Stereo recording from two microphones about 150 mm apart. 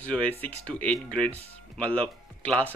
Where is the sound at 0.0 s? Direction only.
10° left (ahead or behind).